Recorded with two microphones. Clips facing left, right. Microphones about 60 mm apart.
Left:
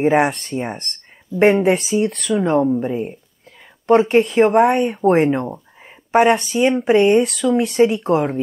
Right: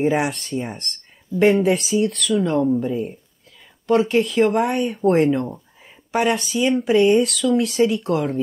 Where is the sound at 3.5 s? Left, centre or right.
Left.